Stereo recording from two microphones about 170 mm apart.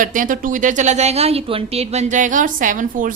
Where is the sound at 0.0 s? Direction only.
50° right (ahead or behind).